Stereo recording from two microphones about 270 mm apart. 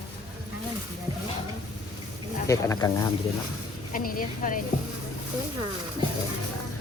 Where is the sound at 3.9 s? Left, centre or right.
Left.